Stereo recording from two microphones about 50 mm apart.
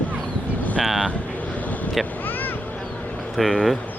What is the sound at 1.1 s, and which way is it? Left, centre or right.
Vehicle, left.